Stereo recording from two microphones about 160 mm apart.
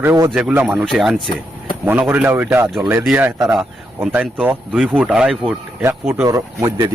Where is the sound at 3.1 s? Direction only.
15° right (ahead or behind).